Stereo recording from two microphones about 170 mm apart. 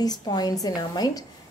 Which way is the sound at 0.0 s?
25° left (ahead or behind).